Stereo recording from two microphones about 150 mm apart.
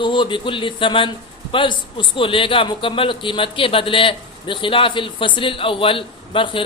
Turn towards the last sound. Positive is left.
turn(degrees=35)  # may be behind; listen again after turning